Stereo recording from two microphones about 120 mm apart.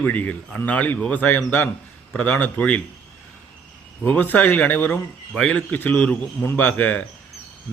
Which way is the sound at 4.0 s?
15° left (ahead or behind).